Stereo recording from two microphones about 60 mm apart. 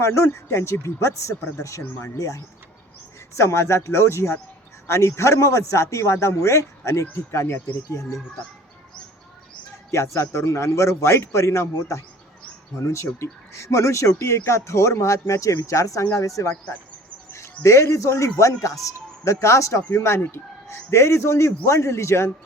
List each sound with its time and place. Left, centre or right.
0.0 s speech: left
2.1 s speech: left
3.3 s speech: left
10.2 s speech: left